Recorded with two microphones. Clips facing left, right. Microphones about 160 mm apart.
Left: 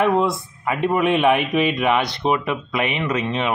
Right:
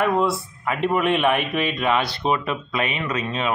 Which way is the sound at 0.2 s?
15° left (ahead or behind).